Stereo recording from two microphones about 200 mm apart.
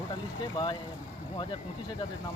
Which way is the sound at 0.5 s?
25° left (ahead or behind).